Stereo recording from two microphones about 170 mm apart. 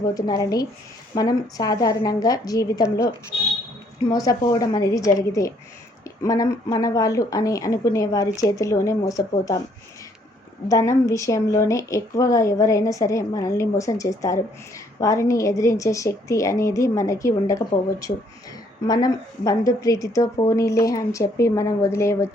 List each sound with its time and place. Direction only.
0.1 s a woman's voice: 20° left (ahead or behind)
4.1 s a woman's voice: 20° left (ahead or behind)
10.7 s a woman's voice: 20° left (ahead or behind)